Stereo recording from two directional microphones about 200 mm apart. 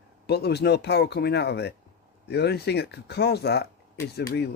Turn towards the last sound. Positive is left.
turn(degrees=55)  # may be behind; listen again after turning